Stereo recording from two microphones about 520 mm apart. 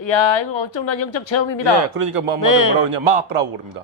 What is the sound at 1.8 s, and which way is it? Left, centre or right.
Speech, right.